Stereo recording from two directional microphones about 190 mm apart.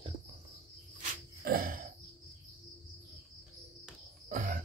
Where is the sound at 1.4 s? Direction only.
50° right (ahead or behind).